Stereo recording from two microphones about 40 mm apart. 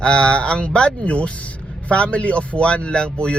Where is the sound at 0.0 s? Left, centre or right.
Left.